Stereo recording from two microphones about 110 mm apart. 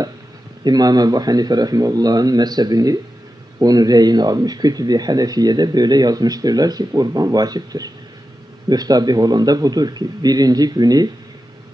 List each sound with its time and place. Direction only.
0.7 s speech: 35° right (ahead or behind)